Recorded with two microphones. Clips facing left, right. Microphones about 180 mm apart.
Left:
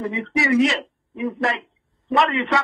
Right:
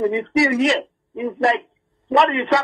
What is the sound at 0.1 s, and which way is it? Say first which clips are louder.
A man's voice: right 2 dB; 35° right (ahead or behind).